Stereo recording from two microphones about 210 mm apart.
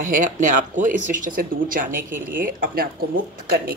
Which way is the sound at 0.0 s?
40° right (ahead or behind).